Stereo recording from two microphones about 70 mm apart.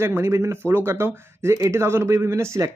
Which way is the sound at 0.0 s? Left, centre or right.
Right.